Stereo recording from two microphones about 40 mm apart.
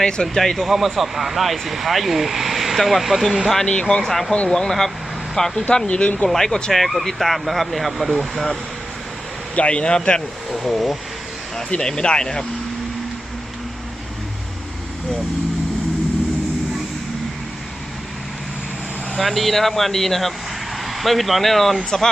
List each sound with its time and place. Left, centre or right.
0.0 s speech: centre
0.5 s speech: centre
3.7 s speech: left
4.0 s speech: centre
5.8 s speech: left
6.2 s speech: centre
9.6 s speech: left
10.5 s speech: centre
11.8 s speech: centre
19.1 s speech: centre